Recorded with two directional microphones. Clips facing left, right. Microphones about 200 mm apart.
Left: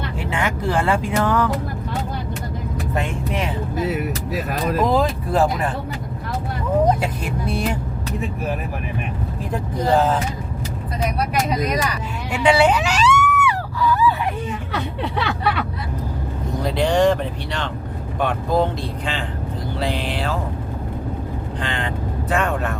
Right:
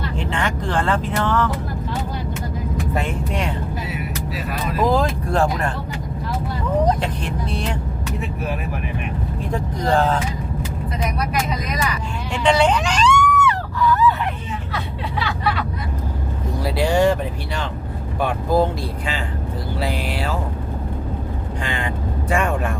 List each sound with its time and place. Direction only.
0.2 s speech: 5° left (ahead or behind)
3.8 s speech: 45° left (ahead or behind)
4.8 s speech: centre (ahead or behind)
6.8 s speech: 10° left (ahead or behind)
9.4 s speech: 5° left (ahead or behind)
11.0 s speech: 35° left (ahead or behind)
12.3 s a sound: 10° left (ahead or behind)
16.6 s speech: 10° right (ahead or behind)
19.8 s speech: 10° right (ahead or behind)
21.6 s speech: 10° right (ahead or behind)